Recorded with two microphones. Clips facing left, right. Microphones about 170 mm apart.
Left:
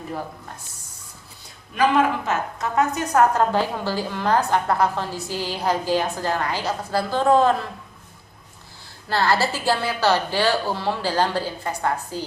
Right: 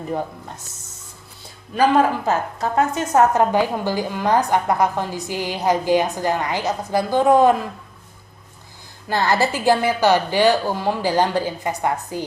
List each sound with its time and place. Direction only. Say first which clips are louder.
1.7 s a woman's voice: right 3 dB; 35° right (ahead or behind); by 7.7 s 15° right (ahead or behind)
9.0 s a woman's voice: right 2 dB; 20° right (ahead or behind)